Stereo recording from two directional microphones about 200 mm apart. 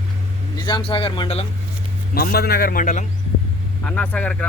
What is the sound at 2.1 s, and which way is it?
Speech, 50° left (ahead or behind).